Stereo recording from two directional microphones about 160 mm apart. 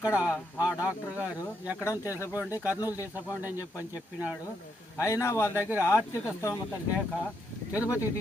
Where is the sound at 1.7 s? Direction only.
20° left (ahead or behind).